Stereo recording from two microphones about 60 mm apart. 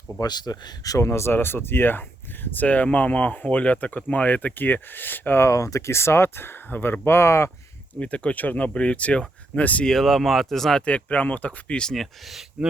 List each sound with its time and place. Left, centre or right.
0.5 s speech: left
0.9 s speech: left
5.4 s speech: left
7.9 s speech: left
9.8 s speech: centre
10.8 s speech: left
11.9 s speech: centre